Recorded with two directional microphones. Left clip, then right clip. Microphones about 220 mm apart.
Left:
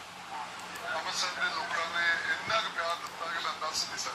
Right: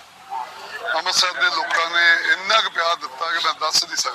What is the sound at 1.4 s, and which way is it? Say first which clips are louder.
Speech: right 13 dB; 50° right (ahead or behind).